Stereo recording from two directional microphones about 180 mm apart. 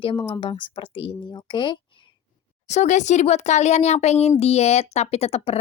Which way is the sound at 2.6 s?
40° left (ahead or behind).